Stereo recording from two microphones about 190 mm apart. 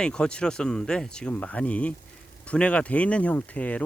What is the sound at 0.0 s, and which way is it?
Speech, 5° left (ahead or behind).